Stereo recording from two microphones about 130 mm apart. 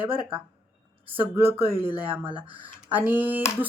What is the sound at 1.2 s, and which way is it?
Speech, 20° right (ahead or behind).